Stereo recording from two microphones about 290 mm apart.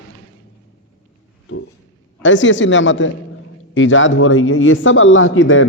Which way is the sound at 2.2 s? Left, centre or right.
Left.